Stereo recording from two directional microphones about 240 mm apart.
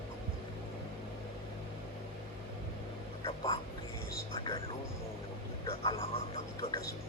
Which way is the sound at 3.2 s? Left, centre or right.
Left.